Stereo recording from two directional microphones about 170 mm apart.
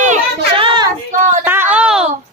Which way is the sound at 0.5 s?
30° right (ahead or behind).